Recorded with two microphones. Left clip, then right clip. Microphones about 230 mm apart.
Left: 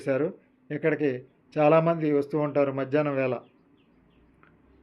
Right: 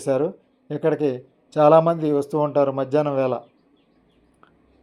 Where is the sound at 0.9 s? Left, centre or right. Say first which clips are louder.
Right 4 dB; centre.